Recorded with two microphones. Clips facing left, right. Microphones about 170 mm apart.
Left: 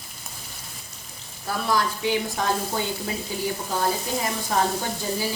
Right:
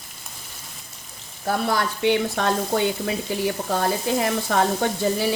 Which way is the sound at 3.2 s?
70° right (ahead or behind).